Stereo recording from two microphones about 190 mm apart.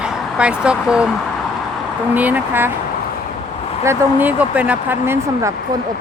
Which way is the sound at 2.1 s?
10° right (ahead or behind).